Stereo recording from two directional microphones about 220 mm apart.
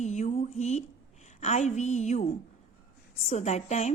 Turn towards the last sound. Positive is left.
turn(degrees=30)  # may be behind; listen again after turning